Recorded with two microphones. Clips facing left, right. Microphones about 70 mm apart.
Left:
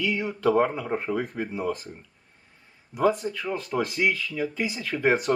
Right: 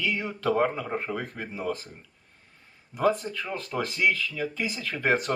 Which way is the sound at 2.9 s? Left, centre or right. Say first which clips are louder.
Left 2 dB; centre.